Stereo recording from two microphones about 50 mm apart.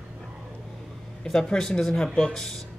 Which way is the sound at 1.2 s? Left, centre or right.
Centre.